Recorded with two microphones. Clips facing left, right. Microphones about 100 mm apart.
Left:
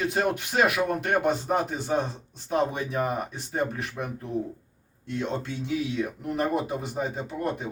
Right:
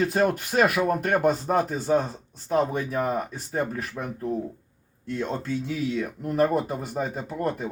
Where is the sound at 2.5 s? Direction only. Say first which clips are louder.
Right 2 dB; 40° right (ahead or behind).